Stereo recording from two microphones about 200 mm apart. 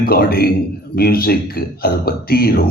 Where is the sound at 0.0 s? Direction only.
50° left (ahead or behind).